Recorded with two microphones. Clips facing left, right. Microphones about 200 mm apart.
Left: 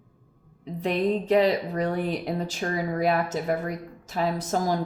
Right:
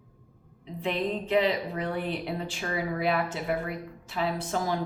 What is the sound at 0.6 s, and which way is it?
A woman's voice, 40° left (ahead or behind).